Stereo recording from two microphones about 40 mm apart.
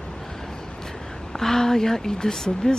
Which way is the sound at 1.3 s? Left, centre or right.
Centre.